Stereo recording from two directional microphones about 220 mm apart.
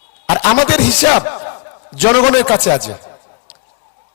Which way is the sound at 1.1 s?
20° left (ahead or behind).